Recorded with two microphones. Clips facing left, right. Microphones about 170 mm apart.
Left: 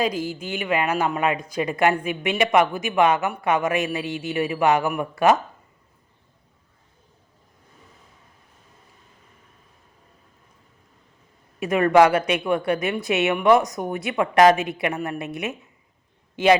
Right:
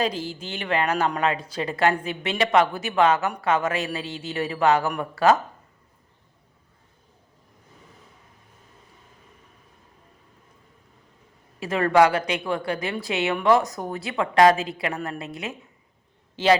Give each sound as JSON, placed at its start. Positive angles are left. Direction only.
{"t": 0.0, "sound": "speech", "side_deg": 10}
{"t": 11.6, "sound": "a woman's voice", "side_deg": 20}